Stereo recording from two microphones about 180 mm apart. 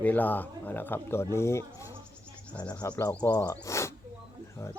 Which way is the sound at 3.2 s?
20° left (ahead or behind).